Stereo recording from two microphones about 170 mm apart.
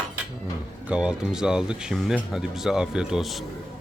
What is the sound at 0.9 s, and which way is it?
Speech, 5° right (ahead or behind).